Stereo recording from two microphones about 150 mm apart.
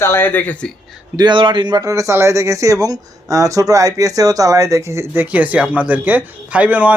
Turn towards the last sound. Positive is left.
turn(degrees=-10)  # may be behind; listen again after turning